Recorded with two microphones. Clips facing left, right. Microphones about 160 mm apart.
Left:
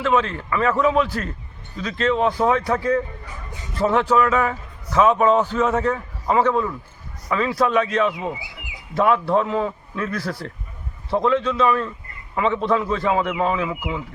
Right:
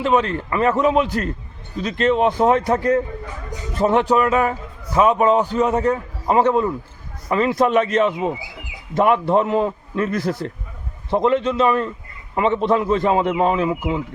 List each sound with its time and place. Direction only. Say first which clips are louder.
0.0 s a man's voice: right 2 dB; 20° right (ahead or behind)